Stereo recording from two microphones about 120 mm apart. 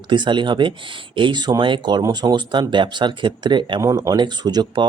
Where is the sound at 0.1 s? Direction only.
40° right (ahead or behind).